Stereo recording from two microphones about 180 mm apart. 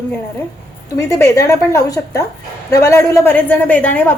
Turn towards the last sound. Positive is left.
turn(degrees=10)  # may be behind; listen again after turning